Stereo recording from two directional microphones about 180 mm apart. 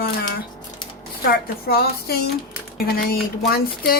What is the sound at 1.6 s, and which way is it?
Speech, 60° left (ahead or behind).